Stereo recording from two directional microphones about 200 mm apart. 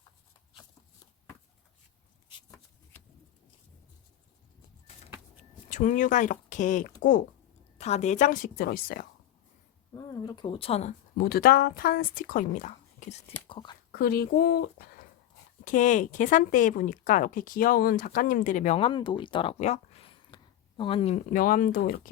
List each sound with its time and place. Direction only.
5.6 s speech: 35° left (ahead or behind)
9.9 s speech: 20° left (ahead or behind)
11.2 s speech: 50° left (ahead or behind); by 13.7 s 25° left (ahead or behind)
13.9 s speech: 50° left (ahead or behind)
15.6 s speech: 40° left (ahead or behind)